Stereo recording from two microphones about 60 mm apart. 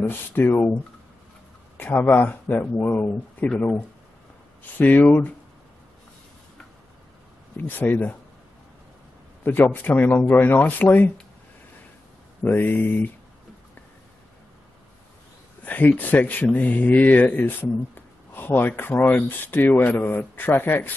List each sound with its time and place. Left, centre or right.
0.0 s speech: left
1.8 s speech: left
7.5 s speech: left
9.4 s speech: left
12.4 s speech: left
15.6 s speech: left